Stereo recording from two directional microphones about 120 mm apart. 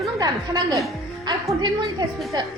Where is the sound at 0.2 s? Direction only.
30° right (ahead or behind).